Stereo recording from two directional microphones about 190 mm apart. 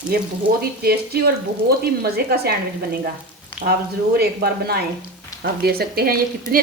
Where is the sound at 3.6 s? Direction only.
55° right (ahead or behind).